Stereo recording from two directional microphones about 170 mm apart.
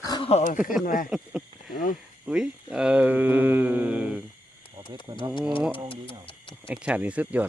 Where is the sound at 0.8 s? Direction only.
55° left (ahead or behind).